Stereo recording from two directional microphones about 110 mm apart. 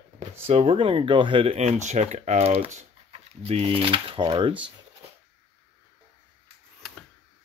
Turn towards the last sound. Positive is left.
turn(degrees=0)  # may be behind; listen again after turning